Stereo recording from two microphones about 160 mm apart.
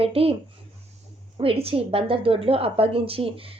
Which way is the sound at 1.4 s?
35° right (ahead or behind).